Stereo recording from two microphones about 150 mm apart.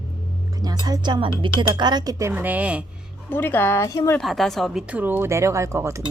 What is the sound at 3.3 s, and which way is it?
Speech, 15° left (ahead or behind).